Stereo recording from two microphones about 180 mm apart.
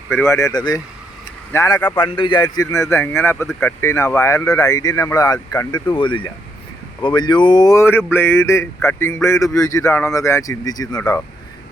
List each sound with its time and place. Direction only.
0.2 s speech: 15° left (ahead or behind)